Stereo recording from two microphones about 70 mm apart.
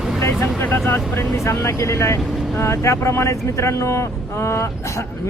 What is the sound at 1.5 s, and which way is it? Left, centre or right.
Speech, left.